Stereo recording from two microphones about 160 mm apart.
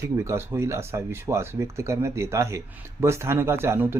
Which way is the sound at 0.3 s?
15° right (ahead or behind).